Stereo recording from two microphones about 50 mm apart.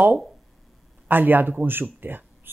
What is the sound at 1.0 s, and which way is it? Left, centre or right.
Speech, right.